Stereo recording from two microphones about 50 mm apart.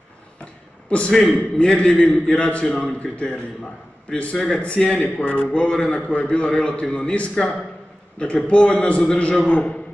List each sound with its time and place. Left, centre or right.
0.8 s a man's voice: left
5.0 s speech: left
5.5 s a man's voice: centre